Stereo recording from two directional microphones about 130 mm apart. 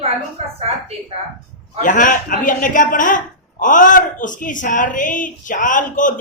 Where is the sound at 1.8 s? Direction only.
85° left.